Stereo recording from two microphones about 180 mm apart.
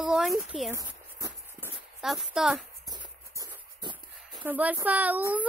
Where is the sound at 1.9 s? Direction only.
Centre (ahead or behind).